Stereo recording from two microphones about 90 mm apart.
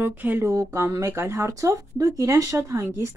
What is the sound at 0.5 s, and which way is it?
Speech, 35° right (ahead or behind).